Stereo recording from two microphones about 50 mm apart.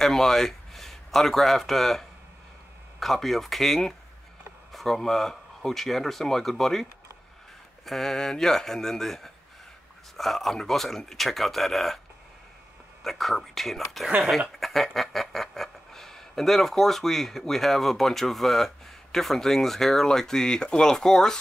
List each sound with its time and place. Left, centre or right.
0.0 s a man's voice: centre
13.0 s speech: centre